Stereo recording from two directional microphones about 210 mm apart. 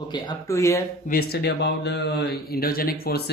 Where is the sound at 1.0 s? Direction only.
45° left (ahead or behind).